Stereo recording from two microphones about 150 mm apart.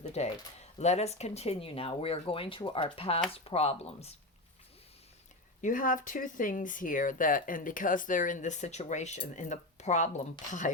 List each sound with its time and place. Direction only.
0.0 s speech: 45° left (ahead or behind)
5.6 s speech: 65° left (ahead or behind)